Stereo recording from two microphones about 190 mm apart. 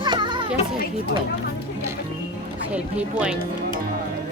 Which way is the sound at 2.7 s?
5° right (ahead or behind).